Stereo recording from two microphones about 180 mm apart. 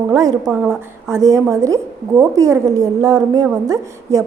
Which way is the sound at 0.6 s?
15° right (ahead or behind).